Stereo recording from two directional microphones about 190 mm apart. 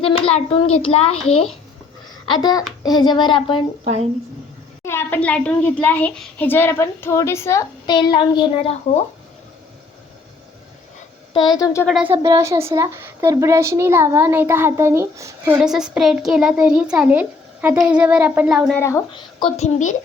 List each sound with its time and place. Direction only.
0.0 s a child's voice: 30° left (ahead or behind)
2.2 s speech: 25° left (ahead or behind)
3.8 s speech: 35° right (ahead or behind)
4.8 s a child's voice: 15° left (ahead or behind); by 9.0 s 30° left (ahead or behind)
11.3 s speech: 20° left (ahead or behind)
12.1 s a woman's voice: 15° right (ahead or behind)
18.8 s speech: 15° left (ahead or behind); by 20.0 s 40° left (ahead or behind)